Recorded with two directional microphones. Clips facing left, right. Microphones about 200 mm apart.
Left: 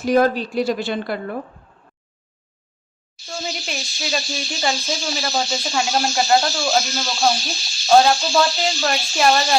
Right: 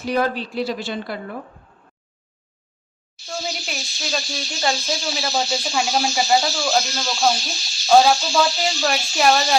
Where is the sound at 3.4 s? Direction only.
Centre (ahead or behind).